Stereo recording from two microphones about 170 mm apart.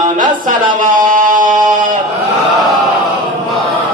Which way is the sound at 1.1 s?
50° right (ahead or behind).